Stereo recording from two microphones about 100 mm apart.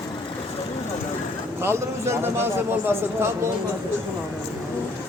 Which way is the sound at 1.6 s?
25° right (ahead or behind).